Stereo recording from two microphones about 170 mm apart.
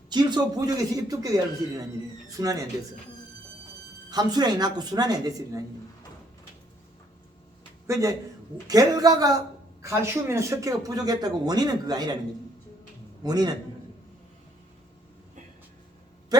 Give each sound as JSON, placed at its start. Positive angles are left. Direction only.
{"t": 0.1, "sound": "speech", "side_deg": -25}
{"t": 4.1, "sound": "speech", "side_deg": -25}
{"t": 7.9, "sound": "speech", "side_deg": -20}
{"t": 13.2, "sound": "speech", "side_deg": -20}
{"t": 16.3, "sound": "a sound", "side_deg": -25}